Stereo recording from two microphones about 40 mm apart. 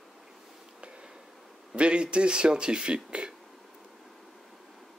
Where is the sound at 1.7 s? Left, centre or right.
Right.